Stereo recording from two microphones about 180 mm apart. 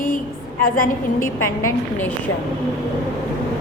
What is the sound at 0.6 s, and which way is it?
Speech, 50° left (ahead or behind).